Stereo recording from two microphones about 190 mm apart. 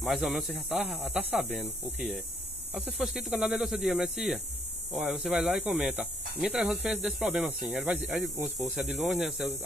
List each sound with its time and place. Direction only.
0.0 s speech: centre (ahead or behind)
2.7 s speech: 5° right (ahead or behind)